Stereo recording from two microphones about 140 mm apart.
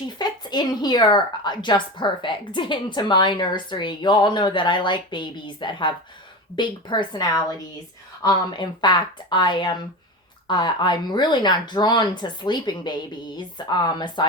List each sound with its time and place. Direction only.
0.2 s a woman's voice: 30° left (ahead or behind)